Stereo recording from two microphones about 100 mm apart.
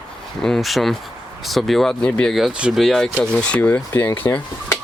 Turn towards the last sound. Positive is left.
turn(degrees=20)  # may be behind; listen again after turning